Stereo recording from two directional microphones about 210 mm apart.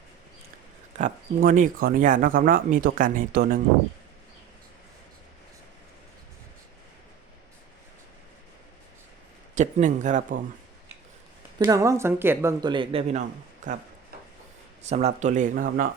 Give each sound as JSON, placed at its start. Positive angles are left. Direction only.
{"t": 0.9, "sound": "speech", "side_deg": -40}
{"t": 9.6, "sound": "speech", "side_deg": -35}
{"t": 11.6, "sound": "speech", "side_deg": -15}
{"t": 14.8, "sound": "speech", "side_deg": -35}